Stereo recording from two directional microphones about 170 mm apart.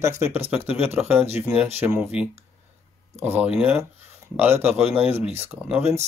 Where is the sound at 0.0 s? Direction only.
15° right (ahead or behind).